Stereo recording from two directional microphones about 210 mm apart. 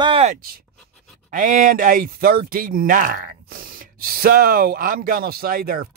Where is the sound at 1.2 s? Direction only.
40° right (ahead or behind).